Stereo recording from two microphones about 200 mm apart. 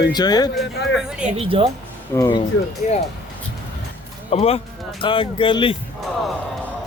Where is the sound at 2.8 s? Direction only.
40° left (ahead or behind).